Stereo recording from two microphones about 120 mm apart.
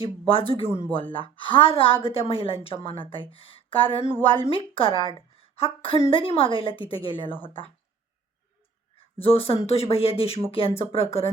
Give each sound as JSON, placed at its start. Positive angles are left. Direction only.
{"t": 0.0, "sound": "a woman's voice", "side_deg": 50}
{"t": 9.1, "sound": "speech", "side_deg": 55}